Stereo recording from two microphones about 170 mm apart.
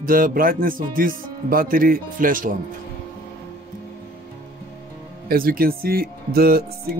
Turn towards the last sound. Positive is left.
turn(degrees=-65)  # may be behind; listen again after turning